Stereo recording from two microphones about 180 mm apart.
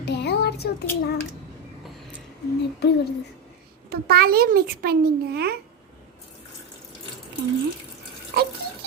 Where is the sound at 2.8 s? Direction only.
65° left (ahead or behind).